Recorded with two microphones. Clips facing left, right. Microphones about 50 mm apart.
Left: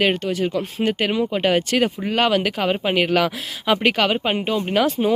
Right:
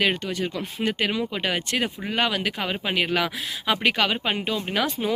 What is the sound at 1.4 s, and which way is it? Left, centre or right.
Speech, left.